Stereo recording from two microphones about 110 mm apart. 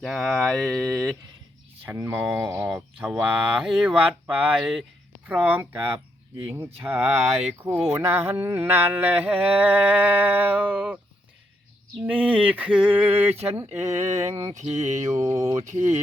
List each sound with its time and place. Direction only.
0.0 s speech: centre (ahead or behind)
2.0 s speech: 10° right (ahead or behind)
5.2 s speech: 15° right (ahead or behind)
6.4 s mantra: 20° right (ahead or behind)
6.8 s speech: 15° right (ahead or behind)
12.0 s speech: 10° right (ahead or behind)
13.6 s mantra: 20° right (ahead or behind)